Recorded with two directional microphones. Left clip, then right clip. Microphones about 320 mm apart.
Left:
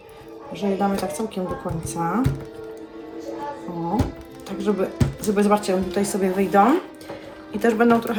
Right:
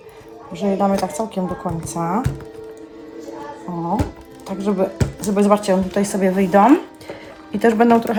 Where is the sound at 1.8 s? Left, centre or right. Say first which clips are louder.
Right 2 dB; right.